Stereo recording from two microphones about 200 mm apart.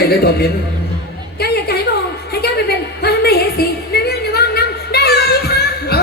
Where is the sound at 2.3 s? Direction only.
55° left (ahead or behind).